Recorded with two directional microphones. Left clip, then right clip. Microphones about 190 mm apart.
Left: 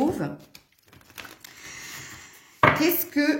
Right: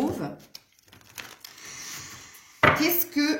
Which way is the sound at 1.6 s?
55° left (ahead or behind).